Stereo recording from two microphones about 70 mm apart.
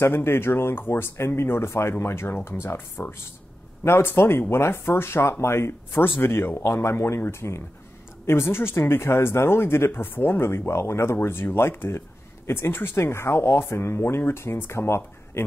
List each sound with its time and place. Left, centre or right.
0.0 s speech: left